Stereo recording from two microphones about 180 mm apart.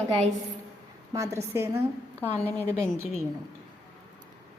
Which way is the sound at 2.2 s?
10° left (ahead or behind).